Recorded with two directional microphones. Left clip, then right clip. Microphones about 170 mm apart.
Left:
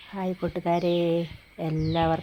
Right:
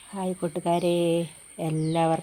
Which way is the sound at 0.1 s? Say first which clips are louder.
Even; 5° right (ahead or behind).